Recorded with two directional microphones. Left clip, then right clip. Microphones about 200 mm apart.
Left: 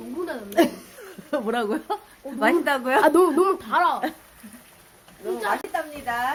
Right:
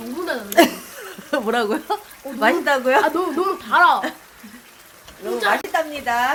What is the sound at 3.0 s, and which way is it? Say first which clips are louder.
Speech: left 3 dB; 40° left (ahead or behind).